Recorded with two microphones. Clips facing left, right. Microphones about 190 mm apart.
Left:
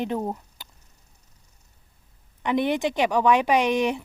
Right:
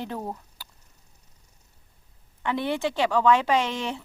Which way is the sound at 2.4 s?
15° left (ahead or behind).